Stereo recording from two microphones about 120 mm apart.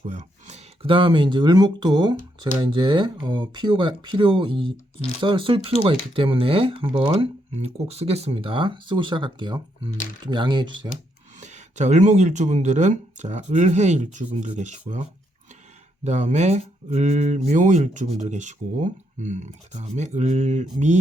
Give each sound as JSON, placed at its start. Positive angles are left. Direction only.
{"t": 0.0, "sound": "speech", "side_deg": -90}
{"t": 11.3, "sound": "speech", "side_deg": -75}
{"t": 16.0, "sound": "speech", "side_deg": -70}